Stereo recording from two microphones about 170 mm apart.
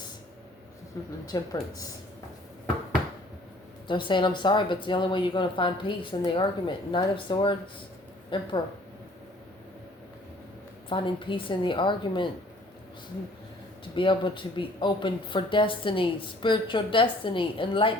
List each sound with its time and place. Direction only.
1.3 s speech: 20° left (ahead or behind)
3.8 s speech: 30° left (ahead or behind)
10.8 s speech: 30° left (ahead or behind)
13.9 s speech: 30° left (ahead or behind)